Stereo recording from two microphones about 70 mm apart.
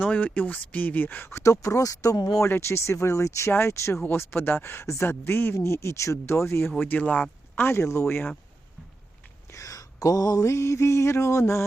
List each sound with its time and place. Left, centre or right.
0.0 s speech: left
1.3 s mantra: left
2.4 s mantra: left
3.5 s speech: left
9.5 s a sound: left
10.4 s mantra: left